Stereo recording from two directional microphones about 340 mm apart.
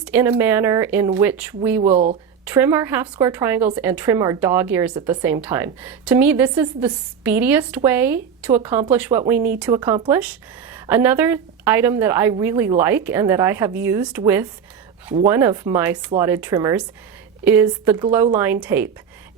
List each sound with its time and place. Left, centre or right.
0.0 s a woman's voice: centre
1.8 s speech: right
2.5 s a woman's voice: centre